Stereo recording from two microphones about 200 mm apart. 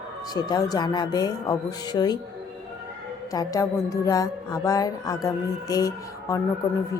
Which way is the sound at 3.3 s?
20° left (ahead or behind).